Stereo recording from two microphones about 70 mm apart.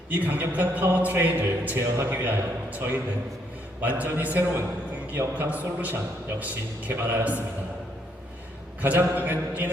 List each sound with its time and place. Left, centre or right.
0.1 s a man's voice: right
8.8 s a man's voice: right